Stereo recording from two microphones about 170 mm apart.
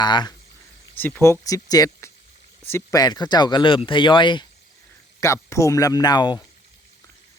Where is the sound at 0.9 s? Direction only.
10° left (ahead or behind); by 4.4 s 30° left (ahead or behind).